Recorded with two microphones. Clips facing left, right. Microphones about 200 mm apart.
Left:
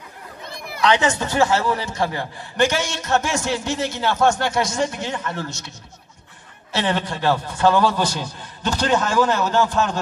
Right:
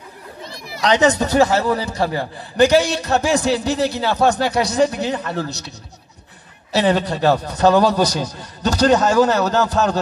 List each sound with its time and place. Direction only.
0.7 s a man's voice: 40° right (ahead or behind)
6.7 s a man's voice: 40° right (ahead or behind)